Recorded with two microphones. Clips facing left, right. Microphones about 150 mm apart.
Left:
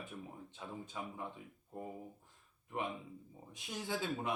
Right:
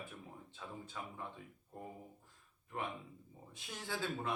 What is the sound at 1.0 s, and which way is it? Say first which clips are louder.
Speech: left 3 dB; 15° left (ahead or behind).